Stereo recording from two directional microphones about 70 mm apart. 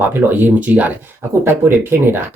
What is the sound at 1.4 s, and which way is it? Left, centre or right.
Speech, right.